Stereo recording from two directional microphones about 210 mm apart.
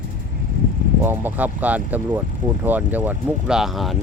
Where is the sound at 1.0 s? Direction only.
10° right (ahead or behind).